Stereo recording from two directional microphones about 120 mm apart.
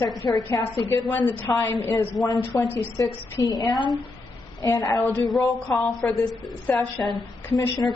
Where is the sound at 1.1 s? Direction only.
15° left (ahead or behind).